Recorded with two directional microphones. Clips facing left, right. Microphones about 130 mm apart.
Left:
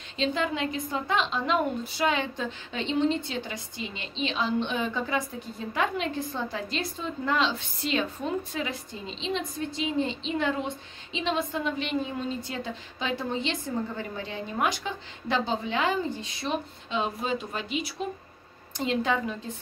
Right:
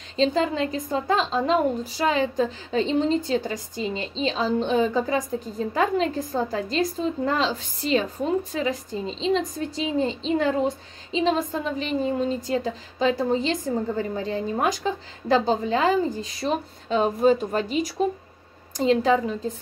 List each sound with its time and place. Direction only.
0.1 s a woman's voice: 35° right (ahead or behind)